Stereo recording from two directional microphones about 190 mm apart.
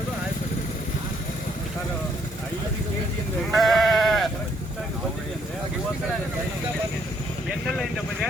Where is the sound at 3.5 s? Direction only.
Centre (ahead or behind).